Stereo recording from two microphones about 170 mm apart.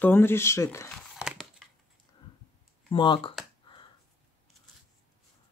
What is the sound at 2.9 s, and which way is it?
Speech, 30° left (ahead or behind).